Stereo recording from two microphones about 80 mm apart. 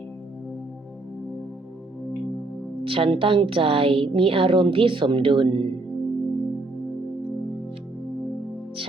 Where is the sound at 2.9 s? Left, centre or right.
Right.